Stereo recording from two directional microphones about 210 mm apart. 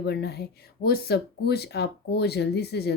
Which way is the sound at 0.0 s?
50° left (ahead or behind).